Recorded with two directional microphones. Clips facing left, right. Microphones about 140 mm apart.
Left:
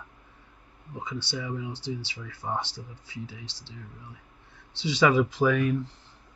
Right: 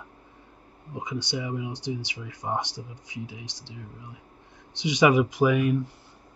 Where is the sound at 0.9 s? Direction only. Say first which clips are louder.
Right 3 dB; 15° right (ahead or behind).